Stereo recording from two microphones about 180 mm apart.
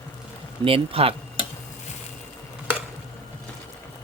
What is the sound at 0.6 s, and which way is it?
Speech, 30° right (ahead or behind).